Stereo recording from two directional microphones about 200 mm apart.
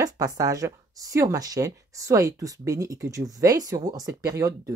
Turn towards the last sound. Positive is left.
turn(degrees=-15)  # may be behind; listen again after turning